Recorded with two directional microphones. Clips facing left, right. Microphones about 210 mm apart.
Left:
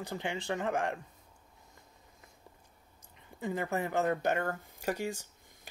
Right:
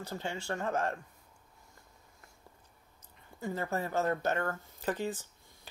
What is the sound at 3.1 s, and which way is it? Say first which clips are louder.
Speech: left 2 dB; 15° left (ahead or behind).